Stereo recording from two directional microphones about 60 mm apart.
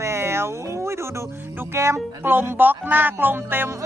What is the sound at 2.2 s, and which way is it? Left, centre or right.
A man's voice, right.